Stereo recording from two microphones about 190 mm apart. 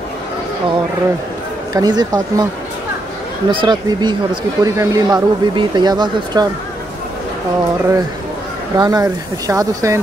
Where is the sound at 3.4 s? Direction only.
25° right (ahead or behind).